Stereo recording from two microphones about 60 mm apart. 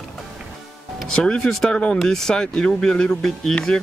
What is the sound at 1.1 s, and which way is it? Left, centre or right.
Speech, centre.